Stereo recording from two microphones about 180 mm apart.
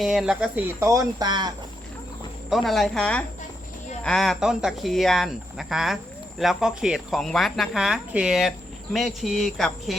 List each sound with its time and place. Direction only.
0.0 s speech: centre (ahead or behind); by 1.5 s 25° right (ahead or behind)
2.5 s speech: centre (ahead or behind)